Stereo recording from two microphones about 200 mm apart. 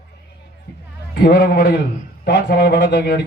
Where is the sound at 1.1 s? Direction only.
55° left (ahead or behind).